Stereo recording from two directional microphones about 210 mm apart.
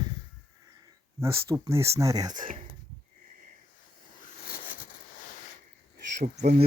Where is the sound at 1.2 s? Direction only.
15° right (ahead or behind).